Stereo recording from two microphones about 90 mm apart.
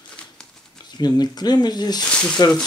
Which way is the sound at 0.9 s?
50° left (ahead or behind).